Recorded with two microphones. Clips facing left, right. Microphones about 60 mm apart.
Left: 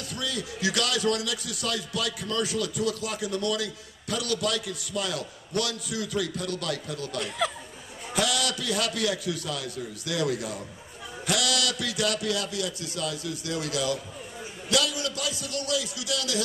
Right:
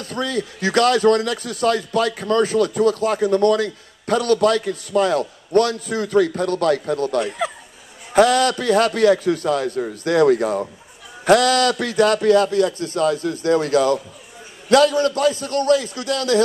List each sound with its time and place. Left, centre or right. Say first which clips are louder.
0.0 s a man's voice: right 9 dB; right
7.2 s speech: right 4 dB; centre
8.1 s a man's voice: right 13 dB; right